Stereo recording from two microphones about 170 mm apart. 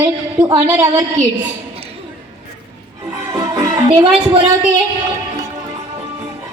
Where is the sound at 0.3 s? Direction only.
25° right (ahead or behind).